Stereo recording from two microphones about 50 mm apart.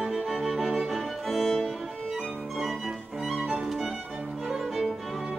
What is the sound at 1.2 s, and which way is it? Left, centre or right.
Music, centre.